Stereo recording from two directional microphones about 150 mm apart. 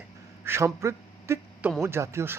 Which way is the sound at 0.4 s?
15° right (ahead or behind).